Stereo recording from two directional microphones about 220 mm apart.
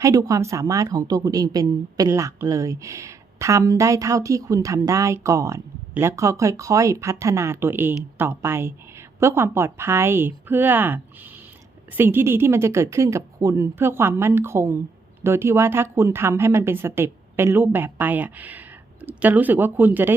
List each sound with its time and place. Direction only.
0.0 s a woman's voice: 15° right (ahead or behind)